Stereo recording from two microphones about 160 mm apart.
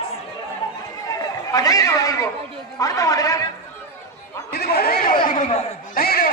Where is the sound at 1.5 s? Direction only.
20° left (ahead or behind).